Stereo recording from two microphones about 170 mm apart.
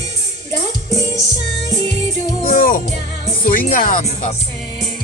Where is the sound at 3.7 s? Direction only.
55° left (ahead or behind).